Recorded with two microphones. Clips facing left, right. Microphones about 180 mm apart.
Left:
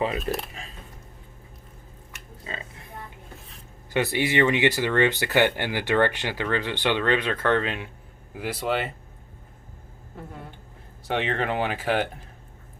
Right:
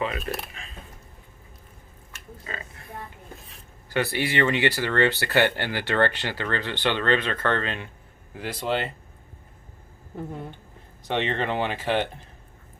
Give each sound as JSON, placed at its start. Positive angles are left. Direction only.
{"t": 0.3, "sound": "speech", "side_deg": 30}
{"t": 2.1, "sound": "a sound", "side_deg": 20}
{"t": 3.8, "sound": "speech", "side_deg": 20}
{"t": 11.1, "sound": "speech", "side_deg": 10}